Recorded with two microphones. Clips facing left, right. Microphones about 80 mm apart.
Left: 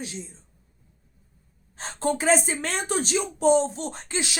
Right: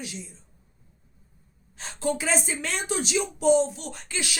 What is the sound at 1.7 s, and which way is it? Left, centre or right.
A woman's voice, left.